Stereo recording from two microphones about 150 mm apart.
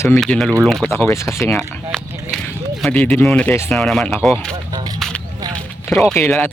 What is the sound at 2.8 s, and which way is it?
Speech, 10° left (ahead or behind).